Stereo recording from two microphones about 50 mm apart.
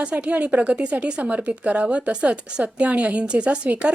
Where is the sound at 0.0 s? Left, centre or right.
Right.